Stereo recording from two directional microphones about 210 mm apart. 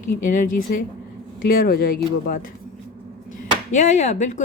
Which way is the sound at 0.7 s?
45° left (ahead or behind).